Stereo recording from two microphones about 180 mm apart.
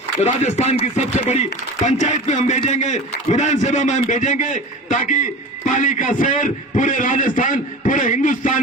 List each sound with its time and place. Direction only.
0.3 s speech: 40° left (ahead or behind)